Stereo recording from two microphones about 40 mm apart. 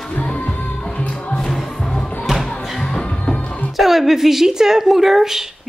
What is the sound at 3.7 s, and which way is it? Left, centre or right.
A woman's voice, centre.